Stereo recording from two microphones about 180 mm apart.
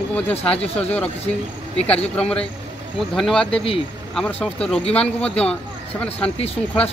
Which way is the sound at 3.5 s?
30° left (ahead or behind).